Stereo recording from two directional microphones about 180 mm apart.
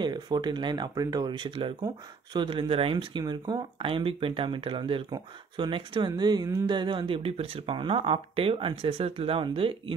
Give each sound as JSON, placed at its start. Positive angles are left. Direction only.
{"t": 0.0, "sound": "speech", "side_deg": -25}